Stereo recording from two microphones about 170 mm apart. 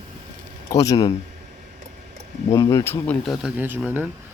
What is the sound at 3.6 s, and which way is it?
Speech, 10° right (ahead or behind).